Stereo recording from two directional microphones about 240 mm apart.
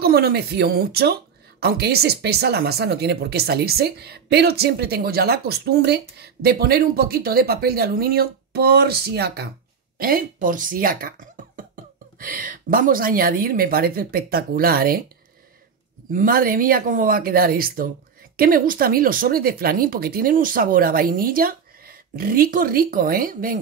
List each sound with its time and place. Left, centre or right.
0.0 s speech: right
16.1 s speech: right